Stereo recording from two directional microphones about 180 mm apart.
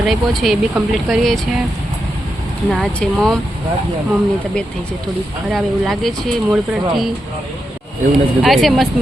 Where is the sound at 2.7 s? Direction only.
Centre (ahead or behind).